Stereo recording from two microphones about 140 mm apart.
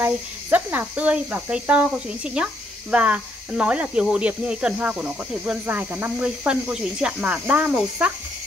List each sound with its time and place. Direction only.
0.0 s speech: 10° right (ahead or behind)